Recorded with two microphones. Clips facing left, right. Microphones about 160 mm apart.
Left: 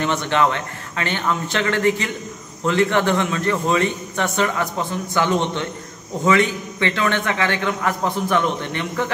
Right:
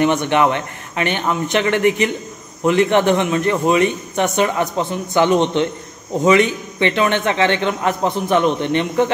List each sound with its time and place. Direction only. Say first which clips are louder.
0.0 s a man's voice: right 4 dB; 15° right (ahead or behind)